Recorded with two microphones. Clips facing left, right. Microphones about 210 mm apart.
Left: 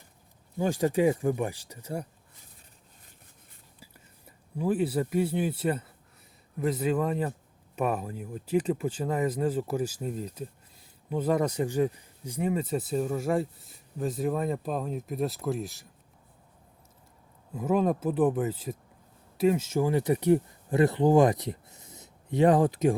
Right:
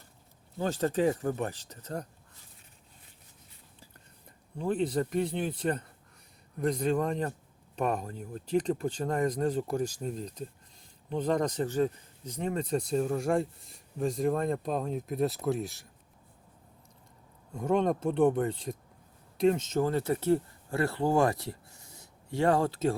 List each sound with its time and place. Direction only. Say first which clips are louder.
0.6 s speech: left 3 dB; 10° left (ahead or behind)
3.8 s speech: left 3 dB; 10° left (ahead or behind)
17.5 s speech: left 1 dB; 5° left (ahead or behind)